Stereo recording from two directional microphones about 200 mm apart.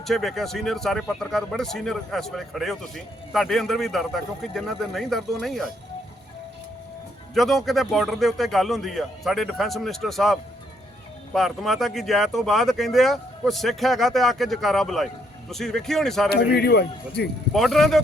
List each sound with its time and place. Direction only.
0.0 s speech: centre (ahead or behind)
7.3 s speech: centre (ahead or behind)
11.3 s speech: centre (ahead or behind)
16.3 s a man's voice: 55° left (ahead or behind)
17.5 s speech: centre (ahead or behind)